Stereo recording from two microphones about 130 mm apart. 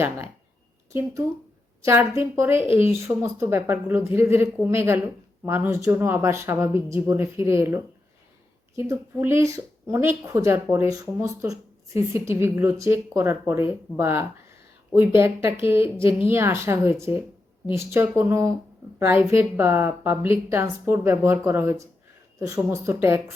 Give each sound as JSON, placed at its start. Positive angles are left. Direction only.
{"t": 1.8, "sound": "a woman's voice", "side_deg": -20}